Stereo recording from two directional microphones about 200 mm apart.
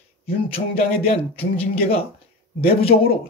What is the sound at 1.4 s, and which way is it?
Speech, 30° left (ahead or behind).